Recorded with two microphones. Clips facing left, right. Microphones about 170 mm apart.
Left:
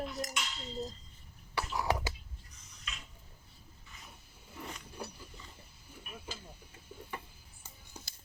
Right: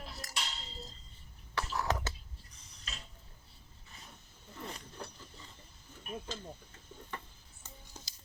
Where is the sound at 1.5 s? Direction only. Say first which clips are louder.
Left 1 dB; 10° left (ahead or behind).